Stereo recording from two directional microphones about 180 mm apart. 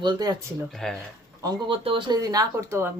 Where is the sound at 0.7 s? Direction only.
Centre (ahead or behind).